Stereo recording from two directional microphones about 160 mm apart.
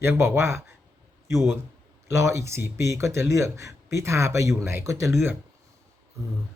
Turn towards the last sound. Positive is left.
turn(degrees=-15)  # may be behind; listen again after turning